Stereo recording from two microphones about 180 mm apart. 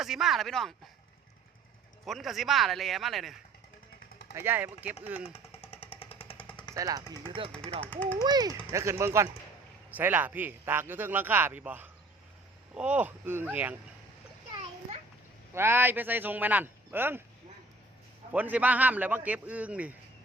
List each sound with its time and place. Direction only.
0.0 s speech: centre (ahead or behind)
2.0 s speech: centre (ahead or behind)
4.4 s a man's voice: 10° right (ahead or behind)
5.2 s jackhammer: 35° left (ahead or behind)
6.7 s speech: 20° right (ahead or behind)
7.9 s speech: 10° left (ahead or behind)
8.2 s a man's voice: 20° right (ahead or behind)
15.5 s a man's voice: 15° right (ahead or behind)
18.3 s a man's voice: 10° right (ahead or behind)